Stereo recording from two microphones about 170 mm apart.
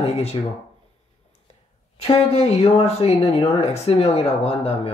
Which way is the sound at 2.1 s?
35° left (ahead or behind).